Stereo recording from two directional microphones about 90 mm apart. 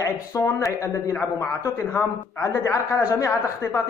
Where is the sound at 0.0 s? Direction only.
40° left (ahead or behind).